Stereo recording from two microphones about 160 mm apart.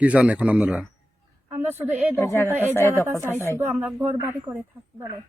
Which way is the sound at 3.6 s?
10° right (ahead or behind).